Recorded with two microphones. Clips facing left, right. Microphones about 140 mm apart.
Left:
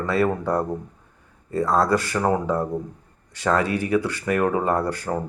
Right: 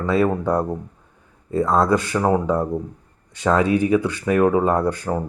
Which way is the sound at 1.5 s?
Centre (ahead or behind).